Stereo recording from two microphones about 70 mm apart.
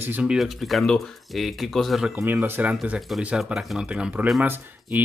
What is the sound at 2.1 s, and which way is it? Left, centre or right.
Speech, right.